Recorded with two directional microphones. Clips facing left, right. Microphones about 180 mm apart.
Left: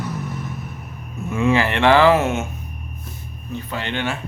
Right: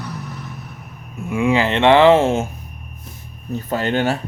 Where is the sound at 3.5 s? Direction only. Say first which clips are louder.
Right 7 dB; 40° right (ahead or behind).